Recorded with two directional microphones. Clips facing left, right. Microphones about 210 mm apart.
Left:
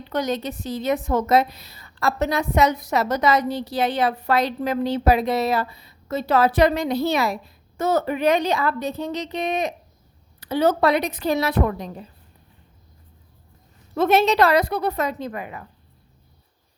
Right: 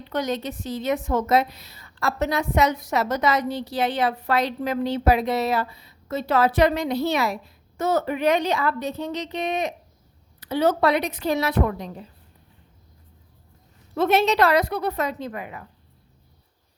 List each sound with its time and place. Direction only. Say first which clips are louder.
0.1 s a woman's voice: left 2 dB; 40° left (ahead or behind)
13.9 s a woman's voice: left 2 dB; 45° left (ahead or behind)